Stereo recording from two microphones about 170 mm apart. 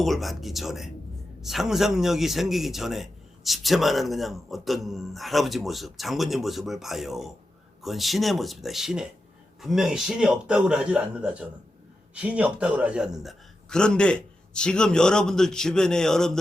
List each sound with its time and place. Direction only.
0.0 s a man's voice: centre (ahead or behind)